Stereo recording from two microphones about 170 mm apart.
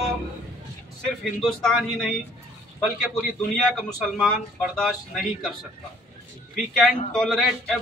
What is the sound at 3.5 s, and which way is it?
A man's voice, 5° left (ahead or behind).